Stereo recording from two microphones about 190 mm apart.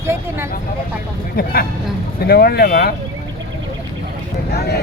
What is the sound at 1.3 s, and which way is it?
Speech, 55° left (ahead or behind).